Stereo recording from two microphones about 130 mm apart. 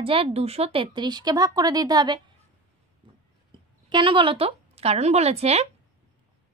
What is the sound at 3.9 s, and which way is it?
A woman's voice, 40° right (ahead or behind).